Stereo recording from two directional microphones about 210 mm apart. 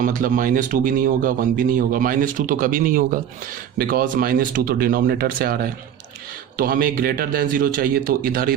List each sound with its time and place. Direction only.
0.0 s speech: 40° right (ahead or behind)